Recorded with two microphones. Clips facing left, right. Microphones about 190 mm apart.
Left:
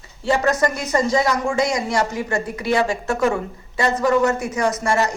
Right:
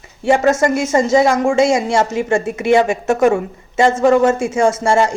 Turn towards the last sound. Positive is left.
turn(degrees=-30)  # may be behind; listen again after turning